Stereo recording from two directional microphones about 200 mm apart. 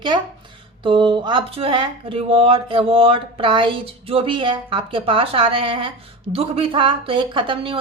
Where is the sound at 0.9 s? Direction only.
25° right (ahead or behind).